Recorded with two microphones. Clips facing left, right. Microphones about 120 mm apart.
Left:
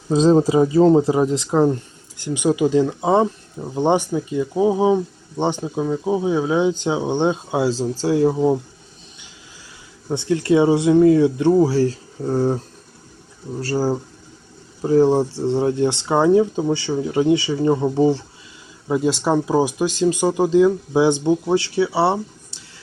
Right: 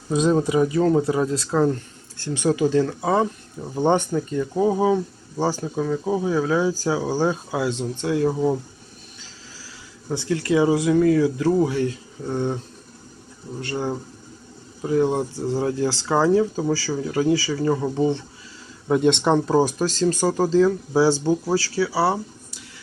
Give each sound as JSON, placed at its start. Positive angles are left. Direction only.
{"t": 0.1, "sound": "speech", "side_deg": 30}
{"t": 10.1, "sound": "speech", "side_deg": 25}
{"t": 18.9, "sound": "speech", "side_deg": 5}